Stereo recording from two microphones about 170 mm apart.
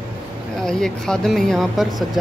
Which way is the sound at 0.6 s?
5° left (ahead or behind).